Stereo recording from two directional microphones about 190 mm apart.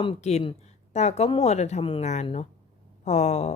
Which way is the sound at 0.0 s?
35° left (ahead or behind).